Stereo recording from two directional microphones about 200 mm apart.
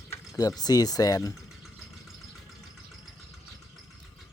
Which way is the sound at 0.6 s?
20° left (ahead or behind).